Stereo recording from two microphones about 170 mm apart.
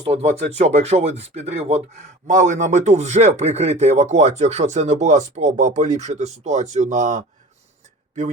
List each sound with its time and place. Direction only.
0.0 s speech: 35° right (ahead or behind)